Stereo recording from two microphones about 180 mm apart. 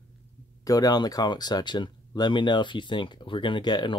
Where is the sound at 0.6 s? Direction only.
20° left (ahead or behind).